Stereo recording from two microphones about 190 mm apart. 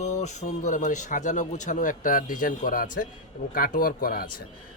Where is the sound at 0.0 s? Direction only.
35° left (ahead or behind).